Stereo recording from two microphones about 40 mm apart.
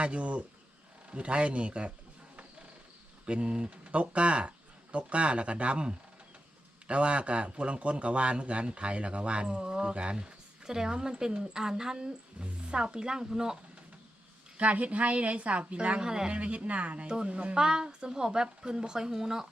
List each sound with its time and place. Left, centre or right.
0.0 s a woman's voice: right
3.2 s a woman's voice: right
14.6 s a woman's voice: right
16.0 s a woman's voice: centre
16.3 s a woman's voice: right
17.1 s a woman's voice: right